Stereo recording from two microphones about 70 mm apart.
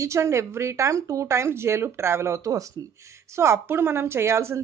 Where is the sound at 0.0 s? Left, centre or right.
Right.